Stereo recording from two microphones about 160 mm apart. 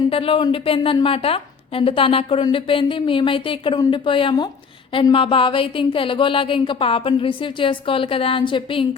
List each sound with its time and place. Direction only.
0.1 s a woman's voice: 35° left (ahead or behind)